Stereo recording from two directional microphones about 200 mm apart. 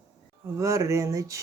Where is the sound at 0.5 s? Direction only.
15° right (ahead or behind).